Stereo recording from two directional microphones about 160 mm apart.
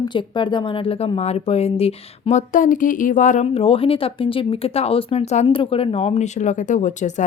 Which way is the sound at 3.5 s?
35° left (ahead or behind).